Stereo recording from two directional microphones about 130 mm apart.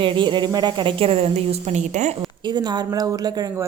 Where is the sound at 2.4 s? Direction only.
35° right (ahead or behind).